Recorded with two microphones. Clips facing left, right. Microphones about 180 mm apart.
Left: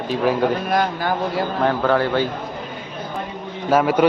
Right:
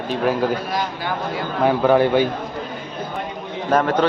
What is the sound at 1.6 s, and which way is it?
Speech, 15° right (ahead or behind).